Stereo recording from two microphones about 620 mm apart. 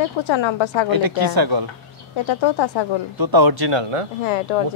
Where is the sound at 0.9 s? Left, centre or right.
Right.